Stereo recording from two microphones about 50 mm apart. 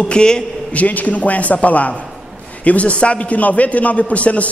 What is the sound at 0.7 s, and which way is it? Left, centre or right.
A man's voice, left.